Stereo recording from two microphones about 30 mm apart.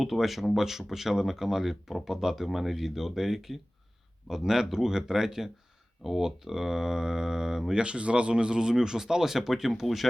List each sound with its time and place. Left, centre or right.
0.0 s speech: centre
7.7 s speech: right
8.7 s speech: centre